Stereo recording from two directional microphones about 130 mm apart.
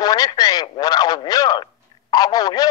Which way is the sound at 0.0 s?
30° left (ahead or behind).